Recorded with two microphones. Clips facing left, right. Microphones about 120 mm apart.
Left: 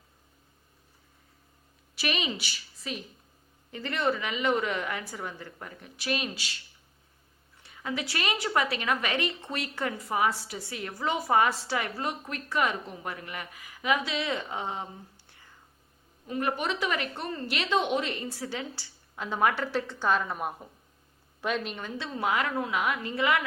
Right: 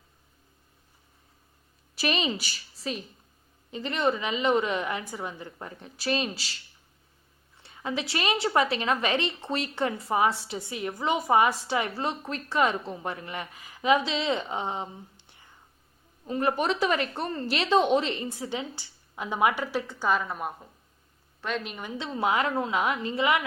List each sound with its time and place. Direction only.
2.0 s a woman's voice: 35° right (ahead or behind)
3.7 s a woman's voice: 20° right (ahead or behind)
7.6 s a woman's voice: 30° right (ahead or behind)
16.2 s a woman's voice: 30° right (ahead or behind); by 21.8 s centre (ahead or behind)
21.8 s a woman's voice: 15° right (ahead or behind)